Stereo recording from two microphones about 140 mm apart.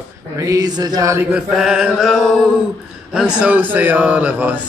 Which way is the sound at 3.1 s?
5° right (ahead or behind).